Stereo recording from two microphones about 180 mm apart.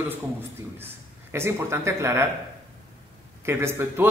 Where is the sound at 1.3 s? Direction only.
15° right (ahead or behind).